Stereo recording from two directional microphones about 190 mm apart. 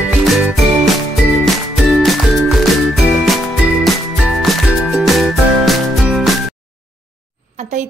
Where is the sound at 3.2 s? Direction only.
Centre (ahead or behind).